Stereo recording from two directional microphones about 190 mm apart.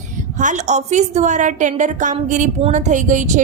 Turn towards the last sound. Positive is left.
turn(degrees=-40)  # may be behind; listen again after turning